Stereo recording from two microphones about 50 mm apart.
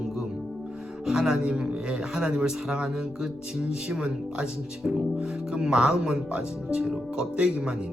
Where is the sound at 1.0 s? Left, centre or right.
Centre.